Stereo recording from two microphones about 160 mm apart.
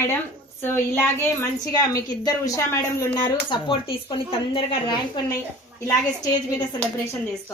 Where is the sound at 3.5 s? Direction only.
35° left (ahead or behind).